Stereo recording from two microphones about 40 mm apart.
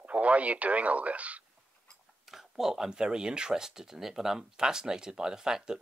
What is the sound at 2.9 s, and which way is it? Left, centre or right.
Speech, right.